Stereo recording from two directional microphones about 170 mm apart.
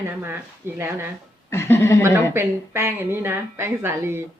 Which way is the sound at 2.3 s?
15° right (ahead or behind).